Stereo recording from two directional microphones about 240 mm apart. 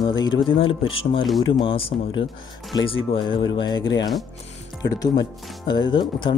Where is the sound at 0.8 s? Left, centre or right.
Left.